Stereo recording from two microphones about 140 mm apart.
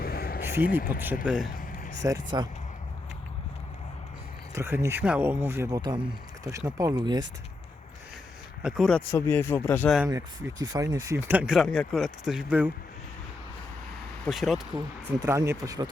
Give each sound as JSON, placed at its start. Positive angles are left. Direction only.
{"t": 0.0, "sound": "a sound", "side_deg": 90}
{"t": 0.5, "sound": "speech", "side_deg": -15}
{"t": 2.0, "sound": "speech", "side_deg": -25}
{"t": 4.5, "sound": "speech", "side_deg": -20}
{"t": 8.6, "sound": "speech", "side_deg": 0}
{"t": 9.0, "sound": "speech", "side_deg": 15}
{"t": 10.1, "sound": "speech", "side_deg": -25}
{"t": 11.3, "sound": "speech", "side_deg": -10}
{"t": 11.5, "sound": "speech", "side_deg": 0}
{"t": 14.3, "sound": "speech", "side_deg": 0}
{"t": 15.2, "sound": "speech", "side_deg": -20}